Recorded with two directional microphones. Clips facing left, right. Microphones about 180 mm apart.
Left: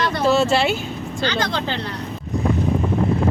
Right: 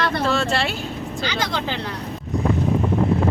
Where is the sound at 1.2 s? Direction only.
10° right (ahead or behind).